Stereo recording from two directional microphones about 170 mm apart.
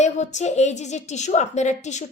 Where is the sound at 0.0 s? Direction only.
45° left (ahead or behind).